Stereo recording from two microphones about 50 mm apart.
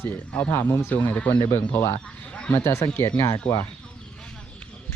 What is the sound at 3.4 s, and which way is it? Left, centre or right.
Speech, left.